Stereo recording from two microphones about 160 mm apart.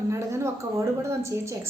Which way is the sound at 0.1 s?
20° right (ahead or behind).